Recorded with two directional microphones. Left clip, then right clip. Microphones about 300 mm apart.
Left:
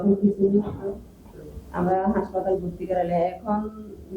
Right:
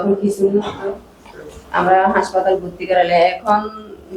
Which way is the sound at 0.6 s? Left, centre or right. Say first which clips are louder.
Right 8 dB; centre.